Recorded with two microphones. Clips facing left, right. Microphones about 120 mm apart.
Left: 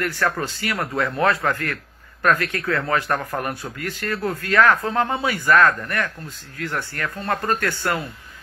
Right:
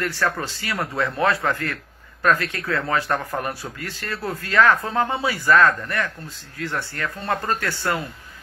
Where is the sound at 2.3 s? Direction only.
30° right (ahead or behind).